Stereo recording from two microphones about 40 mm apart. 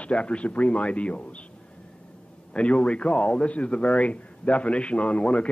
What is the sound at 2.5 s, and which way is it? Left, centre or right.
A man's voice, left.